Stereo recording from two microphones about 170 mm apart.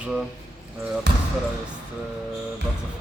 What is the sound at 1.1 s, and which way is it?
Speech, 90° right.